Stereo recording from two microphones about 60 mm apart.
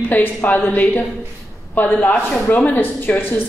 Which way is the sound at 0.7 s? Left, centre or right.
Left.